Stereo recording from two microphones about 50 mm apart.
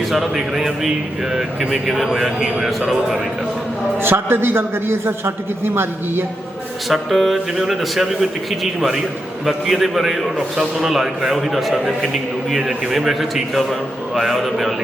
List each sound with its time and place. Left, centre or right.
0.1 s a man's voice: centre
4.0 s a man's voice: right
6.8 s a man's voice: centre